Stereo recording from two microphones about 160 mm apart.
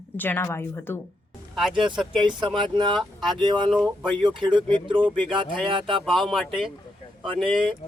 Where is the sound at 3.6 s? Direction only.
Centre (ahead or behind).